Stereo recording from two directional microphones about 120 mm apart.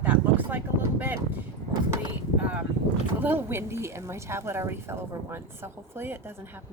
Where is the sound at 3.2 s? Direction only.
20° right (ahead or behind).